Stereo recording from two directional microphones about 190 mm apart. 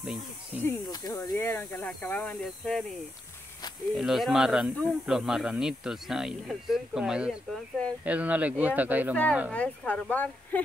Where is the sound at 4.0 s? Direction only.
Centre (ahead or behind).